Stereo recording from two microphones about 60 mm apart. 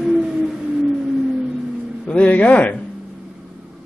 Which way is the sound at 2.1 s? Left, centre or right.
Left.